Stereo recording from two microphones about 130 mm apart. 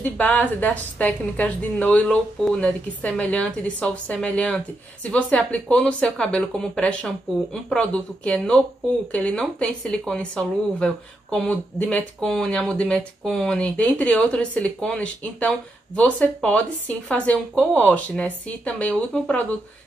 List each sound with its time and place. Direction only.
0.0 s speech: 15° left (ahead or behind)